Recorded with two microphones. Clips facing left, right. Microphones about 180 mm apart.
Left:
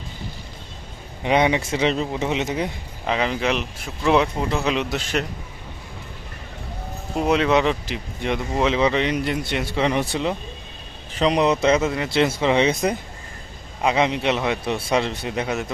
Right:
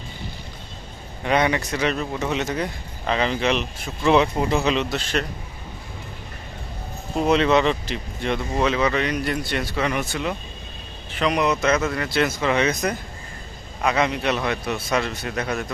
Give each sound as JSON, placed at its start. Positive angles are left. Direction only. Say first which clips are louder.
{"t": 1.2, "sound": "speech", "louder": "left 2 dB", "side_deg": 20}
{"t": 3.0, "sound": "speech", "louder": "even", "side_deg": 10}
{"t": 7.2, "sound": "speech", "louder": "right 1 dB", "side_deg": 5}